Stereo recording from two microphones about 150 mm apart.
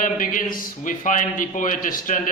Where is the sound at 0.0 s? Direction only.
65° left (ahead or behind).